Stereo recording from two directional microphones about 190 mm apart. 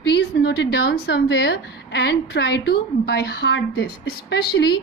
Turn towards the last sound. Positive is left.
turn(degrees=60)  # may be behind; listen again after turning